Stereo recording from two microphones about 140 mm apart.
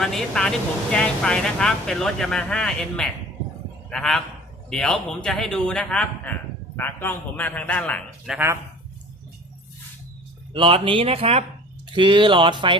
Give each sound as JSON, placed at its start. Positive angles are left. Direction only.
{"t": 0.0, "sound": "a man's voice", "side_deg": 5}
{"t": 8.3, "sound": "speech", "side_deg": -5}
{"t": 10.5, "sound": "speech", "side_deg": -35}
{"t": 11.9, "sound": "speech", "side_deg": -35}